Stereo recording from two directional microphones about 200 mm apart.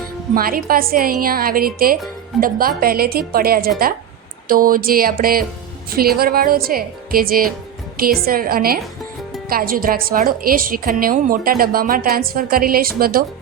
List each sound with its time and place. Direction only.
0.3 s a woman's voice: 45° right (ahead or behind)